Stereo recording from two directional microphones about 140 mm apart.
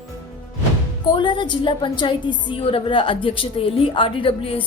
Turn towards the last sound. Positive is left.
turn(degrees=40)  # may be behind; listen again after turning